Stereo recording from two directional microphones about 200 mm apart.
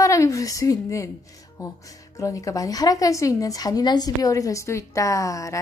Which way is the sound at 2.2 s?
15° left (ahead or behind).